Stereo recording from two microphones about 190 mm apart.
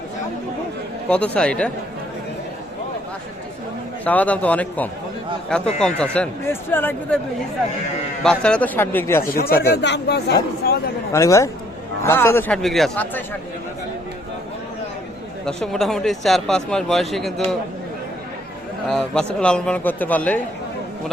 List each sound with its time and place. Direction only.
1.1 s speech: 5° left (ahead or behind)
4.0 s speech: 10° left (ahead or behind)
8.2 s speech: 5° left (ahead or behind)
9.2 s speech: 50° left (ahead or behind)
11.1 s speech: 15° left (ahead or behind)
15.4 s speech: centre (ahead or behind)
18.9 s speech: 5° left (ahead or behind)